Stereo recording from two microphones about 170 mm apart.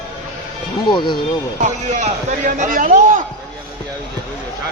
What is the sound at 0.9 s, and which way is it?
Speech, 25° left (ahead or behind).